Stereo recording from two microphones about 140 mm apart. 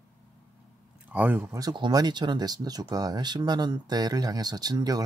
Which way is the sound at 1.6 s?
30° right (ahead or behind).